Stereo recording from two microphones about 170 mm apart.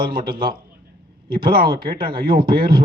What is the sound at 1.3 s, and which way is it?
Speech, 60° right (ahead or behind).